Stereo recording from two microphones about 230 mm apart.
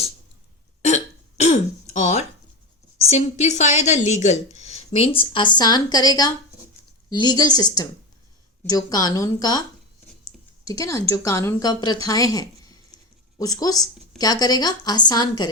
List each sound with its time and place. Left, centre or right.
0.8 s hiccup: left
3.1 s a woman's voice: left